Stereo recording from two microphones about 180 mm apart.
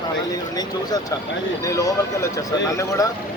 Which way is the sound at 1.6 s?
20° left (ahead or behind).